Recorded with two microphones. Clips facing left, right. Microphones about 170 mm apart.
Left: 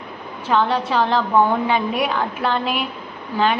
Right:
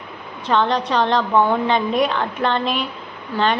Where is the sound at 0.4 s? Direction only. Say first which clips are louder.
Even; 5° left (ahead or behind).